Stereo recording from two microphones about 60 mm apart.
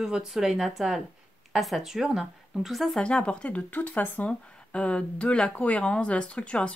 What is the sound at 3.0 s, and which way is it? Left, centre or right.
Speech, centre.